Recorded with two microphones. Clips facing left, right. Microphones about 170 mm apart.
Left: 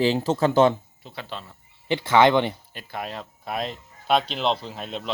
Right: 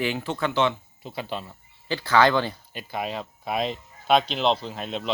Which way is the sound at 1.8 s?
20° left (ahead or behind).